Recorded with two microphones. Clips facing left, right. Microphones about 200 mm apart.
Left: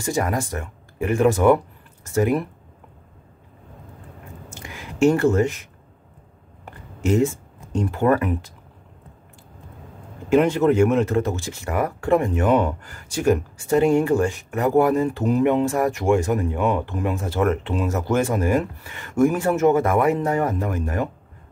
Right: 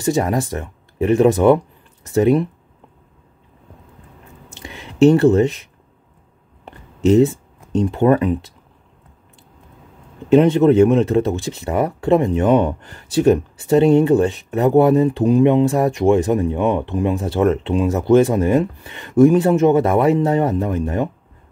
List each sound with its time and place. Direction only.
0.0 s speech: 25° right (ahead or behind)
4.6 s a sound: 20° right (ahead or behind)
7.1 s speech: 20° right (ahead or behind)
10.3 s speech: 20° right (ahead or behind)